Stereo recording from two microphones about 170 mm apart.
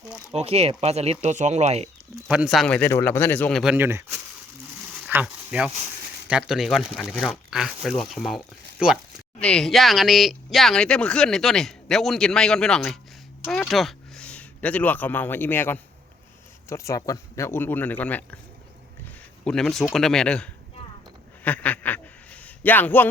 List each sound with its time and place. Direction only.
0.3 s speech: 35° right (ahead or behind)
2.2 s speech: 5° right (ahead or behind)
3.6 s speech: 10° right (ahead or behind); by 18.3 s 10° left (ahead or behind)
19.5 s speech: 5° left (ahead or behind)
21.4 s a sound: 10° left (ahead or behind)